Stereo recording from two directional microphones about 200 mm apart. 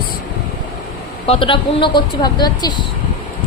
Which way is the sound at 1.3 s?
25° left (ahead or behind).